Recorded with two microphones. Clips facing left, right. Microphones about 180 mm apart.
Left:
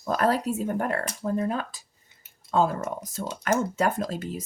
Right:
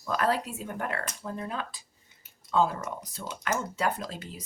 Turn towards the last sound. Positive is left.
turn(degrees=45)  # may be behind; listen again after turning